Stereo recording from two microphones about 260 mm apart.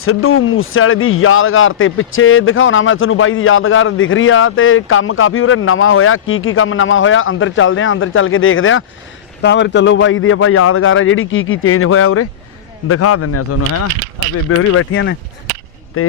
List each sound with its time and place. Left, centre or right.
0.0 s speech: left